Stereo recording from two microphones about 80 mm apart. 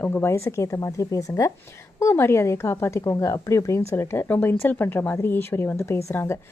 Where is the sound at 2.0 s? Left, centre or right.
Left.